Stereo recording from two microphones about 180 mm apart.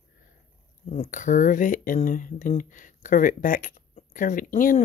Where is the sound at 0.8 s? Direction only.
40° left (ahead or behind).